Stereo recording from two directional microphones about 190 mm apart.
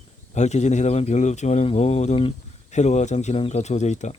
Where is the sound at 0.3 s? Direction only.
35° left (ahead or behind).